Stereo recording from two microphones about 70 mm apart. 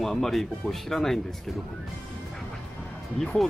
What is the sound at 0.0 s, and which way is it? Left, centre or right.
Speech, centre.